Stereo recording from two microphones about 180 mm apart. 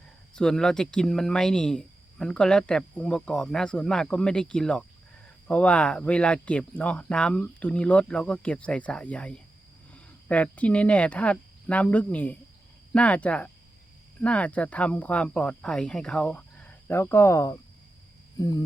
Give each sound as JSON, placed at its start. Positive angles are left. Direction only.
{"t": 0.3, "sound": "speech", "side_deg": 5}